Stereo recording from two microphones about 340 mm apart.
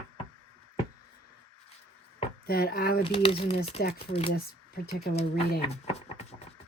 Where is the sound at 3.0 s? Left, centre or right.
Centre.